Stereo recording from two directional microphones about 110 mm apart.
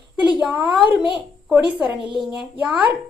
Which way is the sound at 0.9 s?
50° left (ahead or behind).